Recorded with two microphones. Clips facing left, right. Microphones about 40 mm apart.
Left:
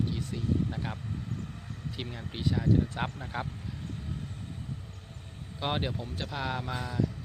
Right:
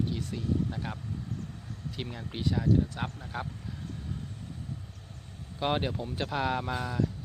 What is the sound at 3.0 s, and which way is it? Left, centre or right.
Speech, left.